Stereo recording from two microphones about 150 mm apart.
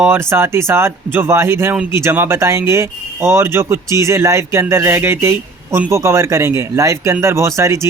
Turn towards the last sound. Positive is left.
turn(degrees=-20)  # may be behind; listen again after turning